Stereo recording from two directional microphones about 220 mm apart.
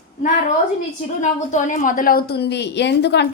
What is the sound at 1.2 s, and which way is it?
A woman's voice, 35° left (ahead or behind).